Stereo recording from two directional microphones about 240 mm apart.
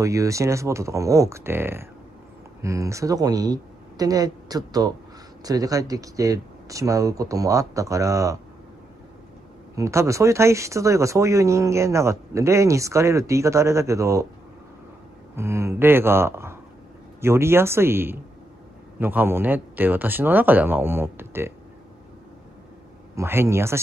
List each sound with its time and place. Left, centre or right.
0.0 s speech: centre
9.8 s speech: centre
15.3 s speech: centre
23.1 s speech: centre